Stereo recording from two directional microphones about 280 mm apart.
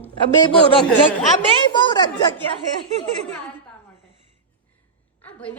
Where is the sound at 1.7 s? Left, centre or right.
Centre.